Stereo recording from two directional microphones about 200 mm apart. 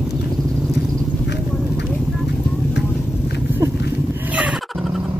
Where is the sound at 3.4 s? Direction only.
10° right (ahead or behind).